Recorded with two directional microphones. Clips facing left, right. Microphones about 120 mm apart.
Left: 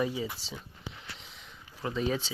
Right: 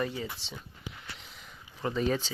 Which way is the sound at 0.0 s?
5° left (ahead or behind).